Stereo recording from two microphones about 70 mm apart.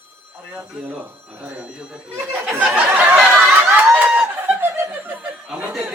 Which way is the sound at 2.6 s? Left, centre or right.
Centre.